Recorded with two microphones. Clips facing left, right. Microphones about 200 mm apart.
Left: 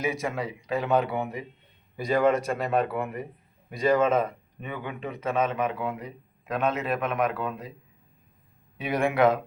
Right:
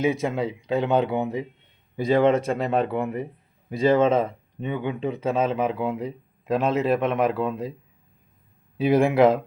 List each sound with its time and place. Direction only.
0.0 s speech: 20° right (ahead or behind)
8.8 s speech: 25° right (ahead or behind)